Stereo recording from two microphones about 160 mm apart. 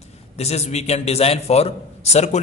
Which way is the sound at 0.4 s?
45° left (ahead or behind).